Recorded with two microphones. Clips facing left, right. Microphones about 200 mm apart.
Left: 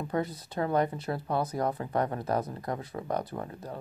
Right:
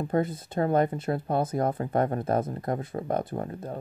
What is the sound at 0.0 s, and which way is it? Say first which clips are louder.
Speech: right 5 dB; 50° right (ahead or behind).